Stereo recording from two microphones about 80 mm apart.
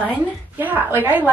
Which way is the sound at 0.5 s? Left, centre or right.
Right.